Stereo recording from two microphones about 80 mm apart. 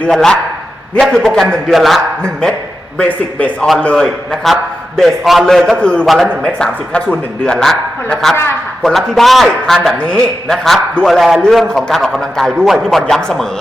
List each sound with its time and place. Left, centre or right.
0.1 s a man's voice: centre
3.0 s a man's voice: centre
5.7 s a man's voice: centre